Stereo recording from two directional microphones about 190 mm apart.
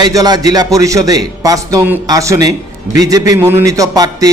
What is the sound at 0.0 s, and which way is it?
A man's voice, 20° right (ahead or behind).